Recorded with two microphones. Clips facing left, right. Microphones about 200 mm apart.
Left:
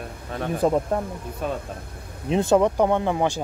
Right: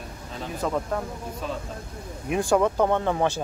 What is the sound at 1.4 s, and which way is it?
Speech, 55° left (ahead or behind).